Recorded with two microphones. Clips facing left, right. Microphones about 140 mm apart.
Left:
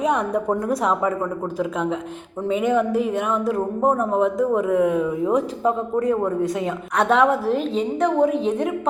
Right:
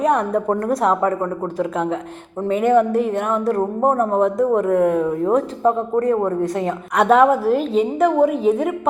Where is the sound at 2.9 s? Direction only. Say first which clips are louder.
Right 2 dB; 5° left (ahead or behind).